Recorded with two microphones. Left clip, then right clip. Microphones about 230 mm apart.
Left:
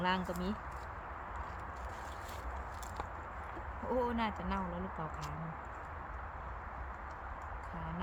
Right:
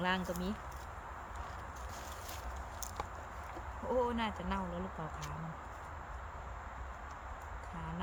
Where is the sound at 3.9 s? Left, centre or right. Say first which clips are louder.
Right 1 dB; centre.